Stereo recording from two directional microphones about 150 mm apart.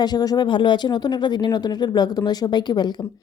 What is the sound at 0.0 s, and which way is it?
Speech, 25° left (ahead or behind).